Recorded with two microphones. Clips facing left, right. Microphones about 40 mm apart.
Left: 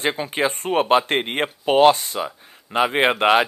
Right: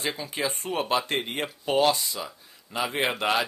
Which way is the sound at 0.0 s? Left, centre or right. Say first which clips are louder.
Left 8 dB; left.